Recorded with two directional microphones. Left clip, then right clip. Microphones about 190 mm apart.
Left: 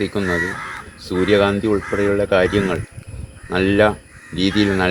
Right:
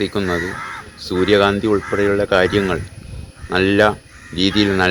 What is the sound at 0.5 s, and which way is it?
Speech, 50° left (ahead or behind).